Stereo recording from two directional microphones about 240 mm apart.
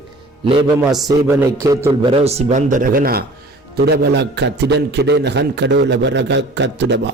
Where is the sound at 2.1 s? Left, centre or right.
Right.